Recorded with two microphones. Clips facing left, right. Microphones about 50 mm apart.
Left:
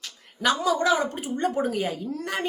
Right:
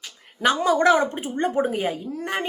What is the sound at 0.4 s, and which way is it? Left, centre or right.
Speech, right.